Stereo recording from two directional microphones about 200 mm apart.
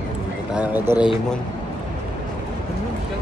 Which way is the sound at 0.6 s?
5° right (ahead or behind).